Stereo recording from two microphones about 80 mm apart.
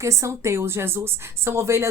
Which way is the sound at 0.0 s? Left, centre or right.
Right.